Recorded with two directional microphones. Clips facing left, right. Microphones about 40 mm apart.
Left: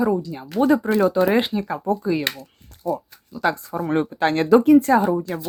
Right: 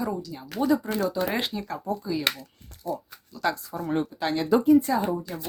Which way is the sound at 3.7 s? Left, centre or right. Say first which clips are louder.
Left 6 dB; left.